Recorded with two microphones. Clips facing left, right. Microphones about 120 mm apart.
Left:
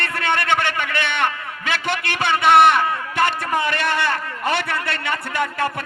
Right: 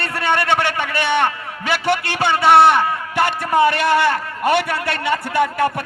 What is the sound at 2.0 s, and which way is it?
A man's voice, 30° right (ahead or behind).